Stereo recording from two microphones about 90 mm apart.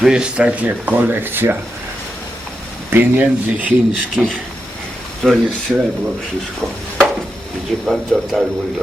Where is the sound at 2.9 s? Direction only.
20° right (ahead or behind).